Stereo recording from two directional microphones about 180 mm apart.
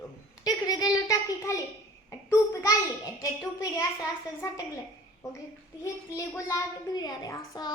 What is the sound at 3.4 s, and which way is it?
A child's voice, 20° left (ahead or behind).